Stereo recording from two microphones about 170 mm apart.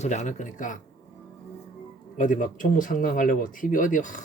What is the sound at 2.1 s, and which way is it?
Speech, 50° left (ahead or behind).